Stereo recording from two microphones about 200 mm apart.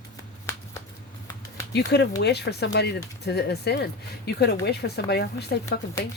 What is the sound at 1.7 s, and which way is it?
Speech, 55° left (ahead or behind).